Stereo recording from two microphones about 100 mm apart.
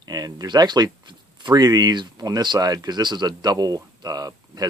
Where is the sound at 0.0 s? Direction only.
40° right (ahead or behind).